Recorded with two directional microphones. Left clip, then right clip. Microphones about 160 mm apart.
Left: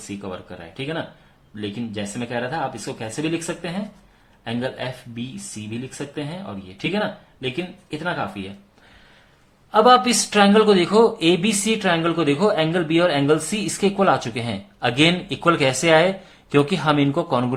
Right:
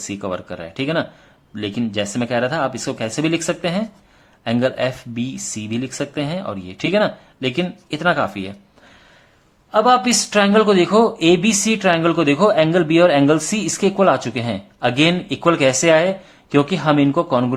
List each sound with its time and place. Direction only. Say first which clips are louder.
0.2 s speech: right 8 dB; 50° right (ahead or behind)
9.7 s speech: even; 15° right (ahead or behind)